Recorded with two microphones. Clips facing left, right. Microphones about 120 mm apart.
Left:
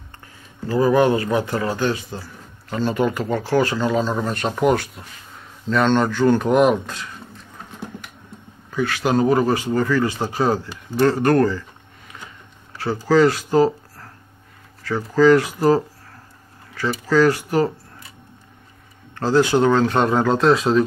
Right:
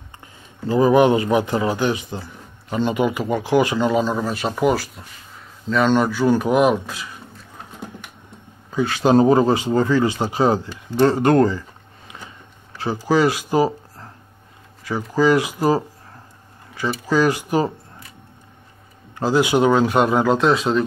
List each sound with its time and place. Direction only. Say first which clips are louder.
0.7 s speech: right 2 dB; 20° right (ahead or behind); by 7.1 s 5° right (ahead or behind)
8.6 s speech: right 3 dB; 20° right (ahead or behind)
12.7 s speech: left 2 dB; 15° right (ahead or behind)
19.1 s speech: left 1 dB; 15° right (ahead or behind)